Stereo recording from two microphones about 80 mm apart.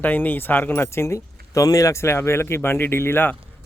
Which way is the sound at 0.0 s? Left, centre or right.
Left.